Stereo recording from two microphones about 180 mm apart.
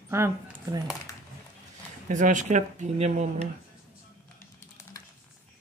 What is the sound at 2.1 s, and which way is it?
Speech, 45° right (ahead or behind).